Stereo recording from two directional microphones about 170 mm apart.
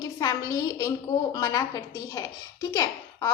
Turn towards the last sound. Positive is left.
turn(degrees=15)  # may be behind; listen again after turning